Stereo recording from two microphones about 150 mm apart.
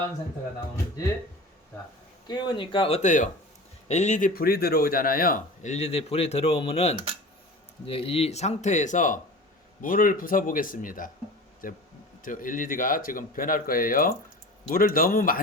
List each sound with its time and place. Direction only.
2.2 s speech: 30° left (ahead or behind); by 4.3 s 50° left (ahead or behind)
4.4 s speech: 90° left; by 5.4 s 75° left (ahead or behind)
5.6 s a man's voice: 45° left (ahead or behind); by 15.4 s 70° left (ahead or behind)